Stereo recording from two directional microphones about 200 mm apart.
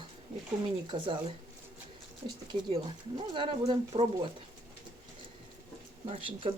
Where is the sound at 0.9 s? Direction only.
25° right (ahead or behind).